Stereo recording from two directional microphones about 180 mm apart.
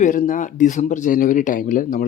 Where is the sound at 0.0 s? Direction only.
45° left (ahead or behind).